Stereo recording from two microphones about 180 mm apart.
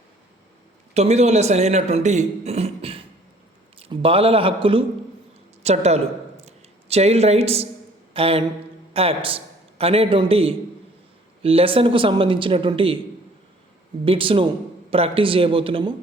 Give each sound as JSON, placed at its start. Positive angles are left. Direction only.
{"t": 0.9, "sound": "a man's voice", "side_deg": -35}
{"t": 5.6, "sound": "a sound", "side_deg": -35}
{"t": 8.9, "sound": "a man's voice", "side_deg": -30}
{"t": 14.0, "sound": "speech", "side_deg": -30}